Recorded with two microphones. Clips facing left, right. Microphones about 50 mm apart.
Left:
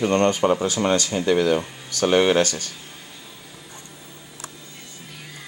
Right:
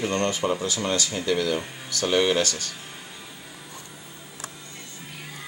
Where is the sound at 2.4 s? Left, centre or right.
Centre.